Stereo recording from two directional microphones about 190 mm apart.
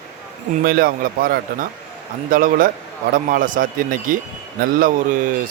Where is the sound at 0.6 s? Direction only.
50° right (ahead or behind).